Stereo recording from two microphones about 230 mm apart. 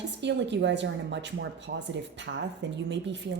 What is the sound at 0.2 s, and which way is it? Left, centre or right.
Speech, right.